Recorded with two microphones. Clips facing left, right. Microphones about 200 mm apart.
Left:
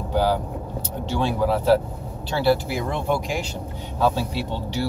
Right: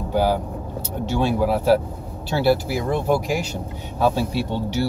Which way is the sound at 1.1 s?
10° right (ahead or behind).